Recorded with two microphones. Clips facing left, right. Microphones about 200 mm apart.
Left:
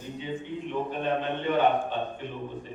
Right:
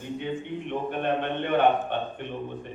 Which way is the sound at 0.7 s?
60° right (ahead or behind).